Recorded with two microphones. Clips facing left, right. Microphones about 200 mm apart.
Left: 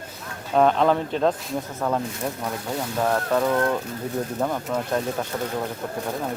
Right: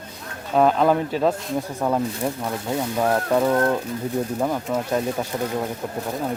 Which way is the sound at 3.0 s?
10° right (ahead or behind).